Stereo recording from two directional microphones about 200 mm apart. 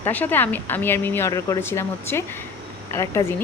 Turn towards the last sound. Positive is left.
turn(degrees=15)  # may be behind; listen again after turning